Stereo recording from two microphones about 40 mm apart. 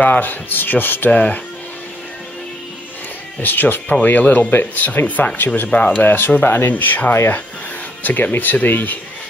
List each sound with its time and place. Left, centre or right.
0.0 s speech: left
1.1 s speech: left
3.3 s speech: left
4.8 s speech: left
6.0 s speech: left
6.7 s speech: left